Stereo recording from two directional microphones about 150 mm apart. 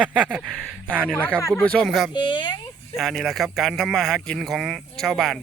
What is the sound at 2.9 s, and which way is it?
Speech, centre (ahead or behind).